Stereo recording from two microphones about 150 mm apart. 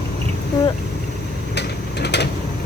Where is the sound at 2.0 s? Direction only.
90° left.